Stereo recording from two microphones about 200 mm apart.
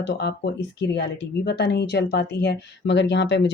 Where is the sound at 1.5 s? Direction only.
55° left (ahead or behind).